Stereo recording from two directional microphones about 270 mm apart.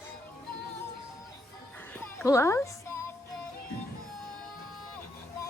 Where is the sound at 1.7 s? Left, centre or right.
Centre.